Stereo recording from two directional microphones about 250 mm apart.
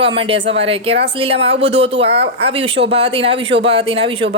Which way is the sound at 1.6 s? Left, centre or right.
Right.